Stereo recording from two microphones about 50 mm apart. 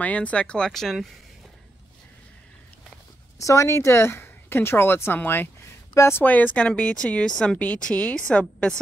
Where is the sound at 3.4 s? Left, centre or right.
Left.